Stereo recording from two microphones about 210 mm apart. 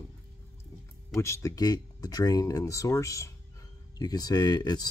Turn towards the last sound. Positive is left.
turn(degrees=20)  # may be behind; listen again after turning